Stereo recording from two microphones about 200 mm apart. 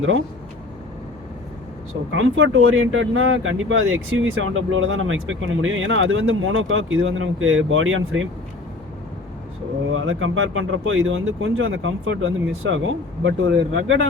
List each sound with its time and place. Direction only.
2.1 s speech: 75° right (ahead or behind)
9.9 s speech: 80° right